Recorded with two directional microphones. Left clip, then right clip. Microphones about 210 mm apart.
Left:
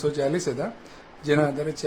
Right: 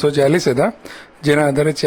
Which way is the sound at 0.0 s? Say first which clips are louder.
Right 10 dB; 40° right (ahead or behind).